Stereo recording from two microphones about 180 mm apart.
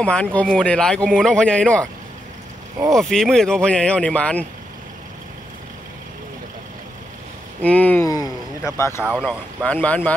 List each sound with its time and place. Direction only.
0.0 s speech: 5° left (ahead or behind)
2.9 s speech: centre (ahead or behind)
7.6 s speech: 10° left (ahead or behind)
8.1 s a sound: 20° left (ahead or behind)
9.2 s speech: 5° right (ahead or behind)
9.7 s speech: 10° left (ahead or behind)